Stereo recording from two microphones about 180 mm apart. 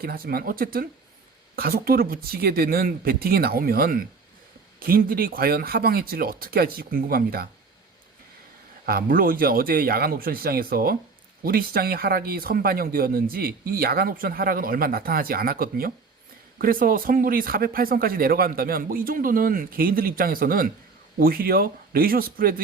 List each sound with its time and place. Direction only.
0.0 s speech: 55° right (ahead or behind)
8.9 s speech: 55° right (ahead or behind)